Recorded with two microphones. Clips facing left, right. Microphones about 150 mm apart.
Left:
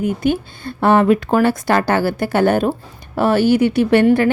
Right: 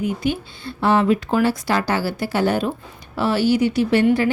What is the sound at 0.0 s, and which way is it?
A woman's voice, 50° left (ahead or behind).